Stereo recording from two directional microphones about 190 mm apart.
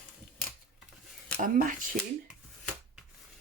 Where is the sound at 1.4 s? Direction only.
45° right (ahead or behind).